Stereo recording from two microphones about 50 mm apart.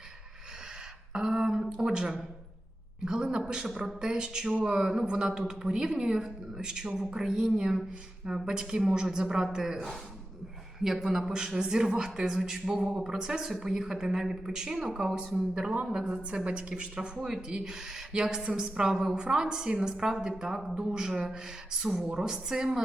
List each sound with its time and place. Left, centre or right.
1.1 s a sound: centre
1.7 s a woman's voice: centre
17.2 s speech: centre